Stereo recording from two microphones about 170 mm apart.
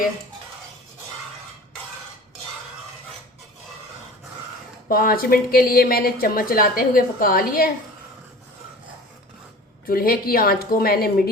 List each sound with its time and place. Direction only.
4.9 s a woman's voice: 60° left (ahead or behind)
9.8 s a woman's voice: 60° left (ahead or behind)